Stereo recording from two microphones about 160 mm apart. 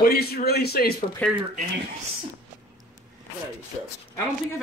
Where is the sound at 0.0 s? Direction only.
75° left (ahead or behind).